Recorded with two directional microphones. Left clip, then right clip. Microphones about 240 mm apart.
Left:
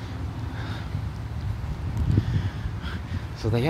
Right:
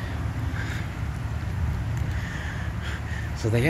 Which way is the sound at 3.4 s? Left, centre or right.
Centre.